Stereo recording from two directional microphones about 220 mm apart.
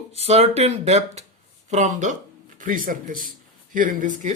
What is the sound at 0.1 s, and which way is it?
Speech, 30° right (ahead or behind).